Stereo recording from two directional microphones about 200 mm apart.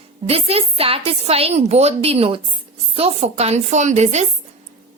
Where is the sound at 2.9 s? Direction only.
30° right (ahead or behind).